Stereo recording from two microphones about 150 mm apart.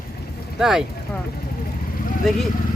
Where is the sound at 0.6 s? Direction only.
Centre (ahead or behind).